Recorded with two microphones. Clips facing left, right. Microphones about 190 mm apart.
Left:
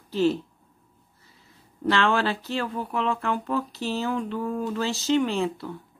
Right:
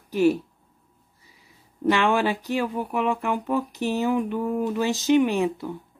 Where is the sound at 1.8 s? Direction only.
15° right (ahead or behind).